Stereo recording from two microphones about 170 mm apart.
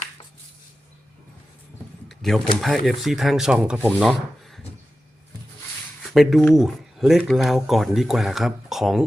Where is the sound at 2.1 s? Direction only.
Centre (ahead or behind).